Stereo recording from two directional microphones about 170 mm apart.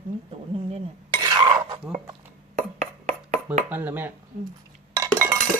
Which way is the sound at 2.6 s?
45° right (ahead or behind).